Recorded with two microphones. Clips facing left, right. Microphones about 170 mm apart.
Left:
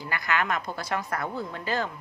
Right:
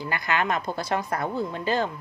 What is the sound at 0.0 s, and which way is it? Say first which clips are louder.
A woman's voice: right 2 dB; 25° right (ahead or behind).